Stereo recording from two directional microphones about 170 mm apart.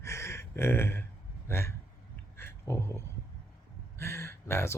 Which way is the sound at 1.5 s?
15° left (ahead or behind).